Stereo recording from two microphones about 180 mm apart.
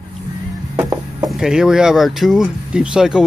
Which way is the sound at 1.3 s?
5° right (ahead or behind).